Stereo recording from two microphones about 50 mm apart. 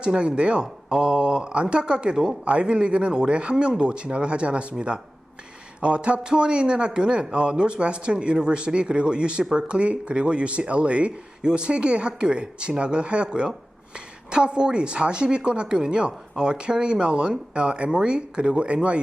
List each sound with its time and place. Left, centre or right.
0.0 s speech: centre